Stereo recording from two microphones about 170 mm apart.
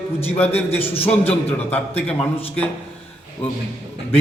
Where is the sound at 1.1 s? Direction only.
10° left (ahead or behind).